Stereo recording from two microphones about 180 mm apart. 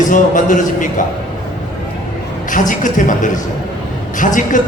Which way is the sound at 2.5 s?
45° left (ahead or behind).